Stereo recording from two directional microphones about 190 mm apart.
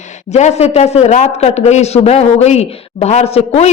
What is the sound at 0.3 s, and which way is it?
A woman's voice, 35° left (ahead or behind).